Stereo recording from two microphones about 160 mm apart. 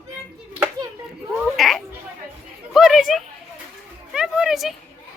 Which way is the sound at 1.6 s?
Centre (ahead or behind).